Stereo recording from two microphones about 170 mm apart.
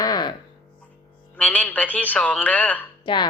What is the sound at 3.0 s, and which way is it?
Speech, 30° left (ahead or behind).